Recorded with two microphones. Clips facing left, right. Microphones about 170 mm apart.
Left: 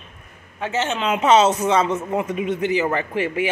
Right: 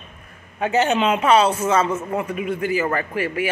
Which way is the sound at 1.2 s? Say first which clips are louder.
Left 5 dB; 20° left (ahead or behind).